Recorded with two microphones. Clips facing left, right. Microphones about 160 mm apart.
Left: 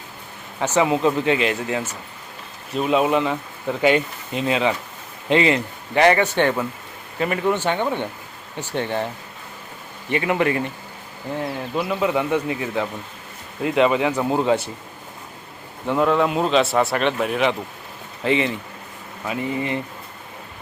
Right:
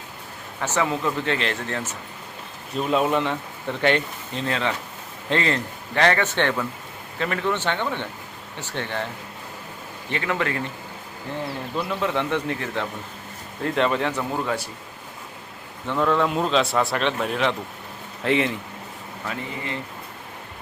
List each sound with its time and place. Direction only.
0.6 s speech: 20° left (ahead or behind)
10.1 s speech: 15° left (ahead or behind)
11.8 s speech: 10° left (ahead or behind)
14.2 s speech: 25° left (ahead or behind)
15.9 s speech: 5° left (ahead or behind)
19.3 s speech: 15° left (ahead or behind)